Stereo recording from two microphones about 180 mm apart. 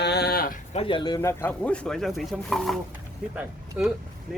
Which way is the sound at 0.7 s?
30° left (ahead or behind).